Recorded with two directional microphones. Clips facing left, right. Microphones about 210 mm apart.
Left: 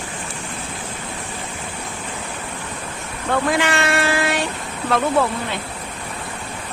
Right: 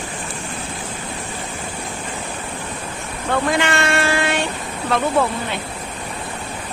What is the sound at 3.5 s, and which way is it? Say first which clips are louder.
Child singing: even; centre (ahead or behind).